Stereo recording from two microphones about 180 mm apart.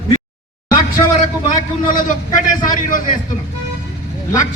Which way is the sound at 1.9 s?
45° left (ahead or behind).